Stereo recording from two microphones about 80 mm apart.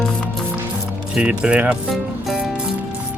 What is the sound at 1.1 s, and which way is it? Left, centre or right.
Speech, centre.